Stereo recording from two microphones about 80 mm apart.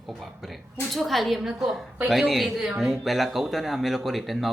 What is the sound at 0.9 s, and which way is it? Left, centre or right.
A woman's voice, centre.